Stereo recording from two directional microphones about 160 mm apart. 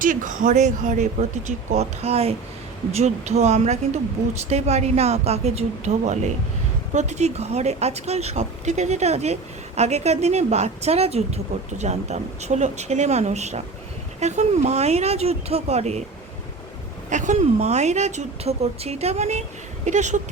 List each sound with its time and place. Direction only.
0.0 s a woman's voice: 55° right (ahead or behind)
17.1 s speech: 50° right (ahead or behind)